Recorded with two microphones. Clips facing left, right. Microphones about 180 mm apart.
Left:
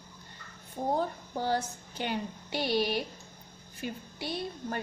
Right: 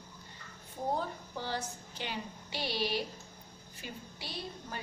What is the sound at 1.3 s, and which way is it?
A woman's voice, 50° left (ahead or behind).